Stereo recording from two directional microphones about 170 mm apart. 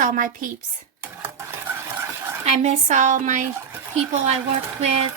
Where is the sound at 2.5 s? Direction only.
45° right (ahead or behind).